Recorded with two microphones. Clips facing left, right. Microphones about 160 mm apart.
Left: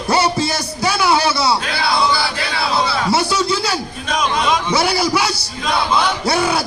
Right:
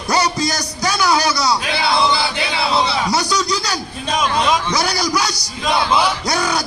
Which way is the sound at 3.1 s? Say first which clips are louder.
Left 2 dB; 25° left (ahead or behind).